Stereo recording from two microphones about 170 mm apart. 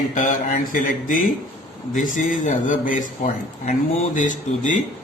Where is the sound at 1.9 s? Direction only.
50° left (ahead or behind).